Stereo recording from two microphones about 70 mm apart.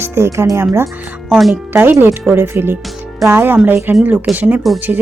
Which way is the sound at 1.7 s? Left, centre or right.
Right.